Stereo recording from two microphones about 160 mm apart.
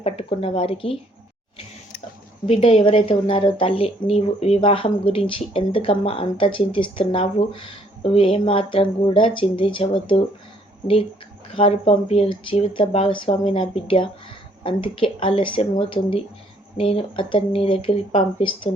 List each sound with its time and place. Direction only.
0.0 s a woman's voice: 35° left (ahead or behind)
2.5 s a woman's voice: 35° left (ahead or behind)
11.5 s a woman's voice: 35° left (ahead or behind)